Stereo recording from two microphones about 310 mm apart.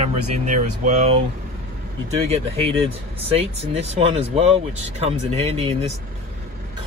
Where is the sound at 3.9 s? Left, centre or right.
Centre.